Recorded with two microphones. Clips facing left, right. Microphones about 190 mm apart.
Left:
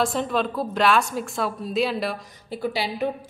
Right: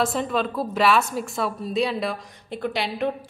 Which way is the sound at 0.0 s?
Centre (ahead or behind).